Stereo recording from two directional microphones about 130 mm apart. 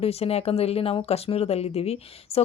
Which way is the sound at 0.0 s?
50° left (ahead or behind).